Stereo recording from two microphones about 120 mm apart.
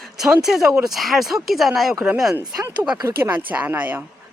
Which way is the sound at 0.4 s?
5° right (ahead or behind).